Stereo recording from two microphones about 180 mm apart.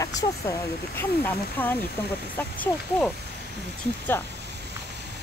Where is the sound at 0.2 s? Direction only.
20° left (ahead or behind).